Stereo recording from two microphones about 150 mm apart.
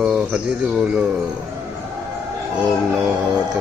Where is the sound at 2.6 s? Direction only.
5° right (ahead or behind).